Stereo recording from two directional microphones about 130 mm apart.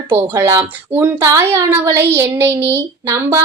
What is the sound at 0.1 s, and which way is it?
A woman's voice, 20° right (ahead or behind).